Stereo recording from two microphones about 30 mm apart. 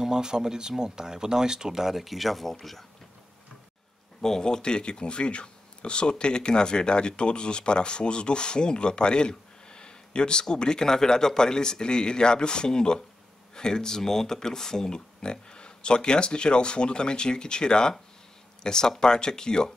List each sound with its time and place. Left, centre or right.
0.0 s speech: right; by 2.5 s centre
4.2 s speech: centre